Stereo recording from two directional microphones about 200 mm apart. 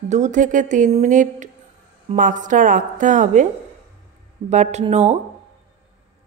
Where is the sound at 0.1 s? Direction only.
35° right (ahead or behind).